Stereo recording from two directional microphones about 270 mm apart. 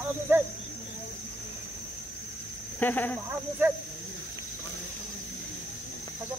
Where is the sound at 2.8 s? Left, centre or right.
Centre.